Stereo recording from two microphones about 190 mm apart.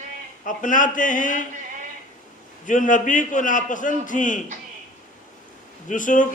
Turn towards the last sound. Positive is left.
turn(degrees=40)  # may be behind; listen again after turning